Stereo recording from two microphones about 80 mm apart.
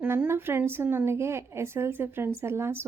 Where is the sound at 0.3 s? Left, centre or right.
Right.